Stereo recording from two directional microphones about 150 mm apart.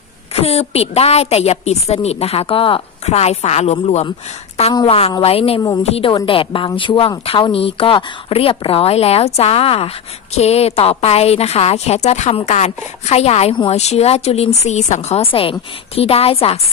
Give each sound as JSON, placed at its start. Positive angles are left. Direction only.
{"t": 0.3, "sound": "a woman's voice", "side_deg": 40}